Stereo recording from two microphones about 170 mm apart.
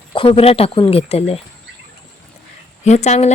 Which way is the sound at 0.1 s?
35° left (ahead or behind).